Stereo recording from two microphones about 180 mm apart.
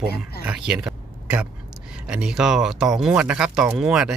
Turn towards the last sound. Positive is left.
turn(degrees=-5)  # may be behind; listen again after turning